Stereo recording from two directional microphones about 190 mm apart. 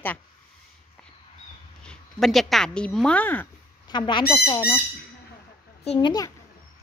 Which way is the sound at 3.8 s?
25° left (ahead or behind).